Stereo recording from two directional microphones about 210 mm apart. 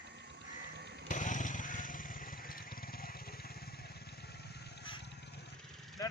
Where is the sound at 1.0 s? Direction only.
35° left (ahead or behind); by 5.5 s 55° left (ahead or behind).